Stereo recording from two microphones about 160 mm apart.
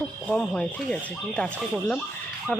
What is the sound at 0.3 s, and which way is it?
Speech, 5° left (ahead or behind).